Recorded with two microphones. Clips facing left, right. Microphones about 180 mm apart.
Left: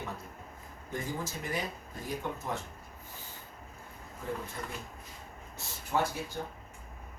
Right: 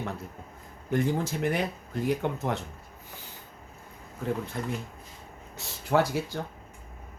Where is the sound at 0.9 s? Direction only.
70° right (ahead or behind).